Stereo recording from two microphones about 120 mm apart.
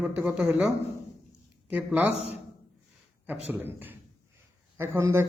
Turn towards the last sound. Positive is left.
turn(degrees=-20)  # may be behind; listen again after turning